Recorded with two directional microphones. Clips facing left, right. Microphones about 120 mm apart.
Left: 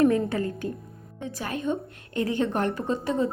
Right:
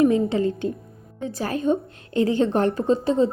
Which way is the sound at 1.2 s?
30° right (ahead or behind).